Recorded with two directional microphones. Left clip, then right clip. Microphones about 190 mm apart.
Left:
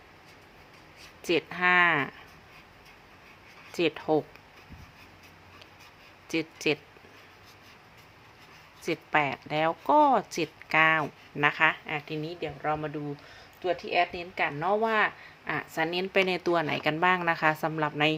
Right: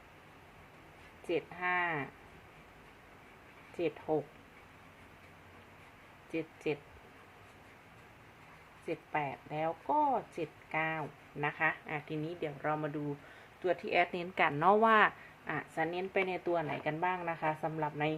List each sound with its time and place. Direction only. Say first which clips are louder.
1.3 s speech: left 10 dB; 40° left (ahead or behind)
4.1 s speech: left 7 dB; 40° left (ahead or behind)
6.3 s speech: left 8 dB; 40° left (ahead or behind)
8.9 s speech: left 10 dB; 40° left (ahead or behind)
11.9 s a woman's voice: left 6 dB; 15° left (ahead or behind); by 15.1 s 10° right (ahead or behind)
15.4 s speech: left 6 dB; 20° left (ahead or behind)